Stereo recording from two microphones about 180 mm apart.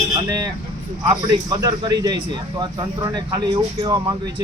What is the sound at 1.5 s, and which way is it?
Speech, 20° right (ahead or behind).